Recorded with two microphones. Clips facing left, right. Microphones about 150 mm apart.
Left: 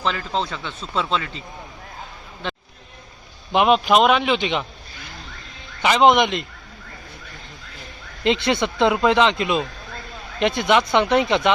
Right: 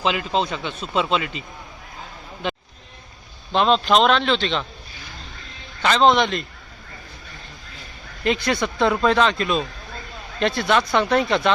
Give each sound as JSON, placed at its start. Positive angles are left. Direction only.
{"t": 0.0, "sound": "speech", "side_deg": -15}
{"t": 2.4, "sound": "a sound", "side_deg": -10}
{"t": 3.5, "sound": "speech", "side_deg": 15}
{"t": 5.8, "sound": "speech", "side_deg": 15}
{"t": 8.2, "sound": "speech", "side_deg": 25}